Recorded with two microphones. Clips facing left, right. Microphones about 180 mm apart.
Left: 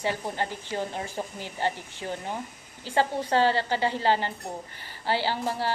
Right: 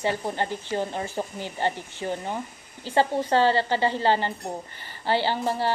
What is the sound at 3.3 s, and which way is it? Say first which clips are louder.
A woman's voice: right 1 dB; 10° left (ahead or behind).